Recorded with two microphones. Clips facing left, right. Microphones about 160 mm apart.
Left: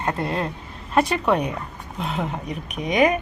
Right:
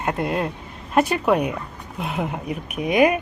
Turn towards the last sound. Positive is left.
turn(degrees=-5)  # may be behind; listen again after turning